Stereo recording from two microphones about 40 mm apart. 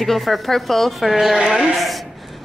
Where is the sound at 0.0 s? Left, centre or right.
Centre.